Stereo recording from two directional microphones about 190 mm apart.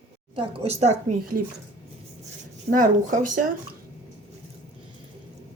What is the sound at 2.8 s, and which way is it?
Speech, 45° right (ahead or behind).